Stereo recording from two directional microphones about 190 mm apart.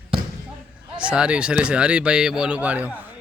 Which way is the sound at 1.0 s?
5° right (ahead or behind).